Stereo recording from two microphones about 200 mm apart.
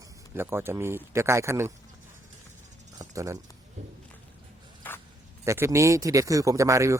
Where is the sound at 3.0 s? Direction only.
15° right (ahead or behind).